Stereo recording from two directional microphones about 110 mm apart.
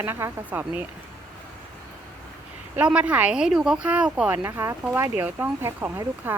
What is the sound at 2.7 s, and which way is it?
Speech, 10° right (ahead or behind).